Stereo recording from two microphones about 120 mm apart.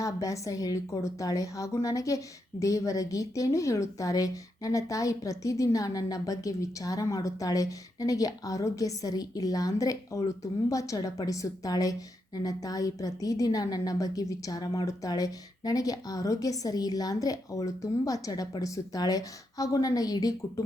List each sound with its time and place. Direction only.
0.0 s a woman's voice: 30° left (ahead or behind)